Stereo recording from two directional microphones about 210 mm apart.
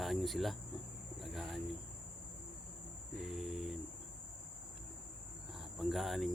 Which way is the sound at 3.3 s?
Centre (ahead or behind).